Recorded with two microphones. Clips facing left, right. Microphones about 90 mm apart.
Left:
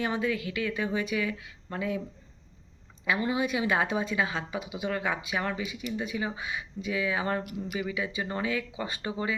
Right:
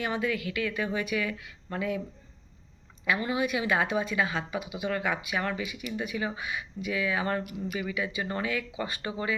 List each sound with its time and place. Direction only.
0.0 s speech: 30° left (ahead or behind)
3.1 s speech: 25° left (ahead or behind)